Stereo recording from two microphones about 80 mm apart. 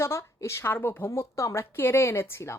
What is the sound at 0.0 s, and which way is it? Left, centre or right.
A woman's voice, left.